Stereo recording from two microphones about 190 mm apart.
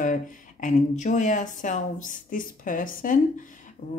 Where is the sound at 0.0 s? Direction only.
40° left (ahead or behind).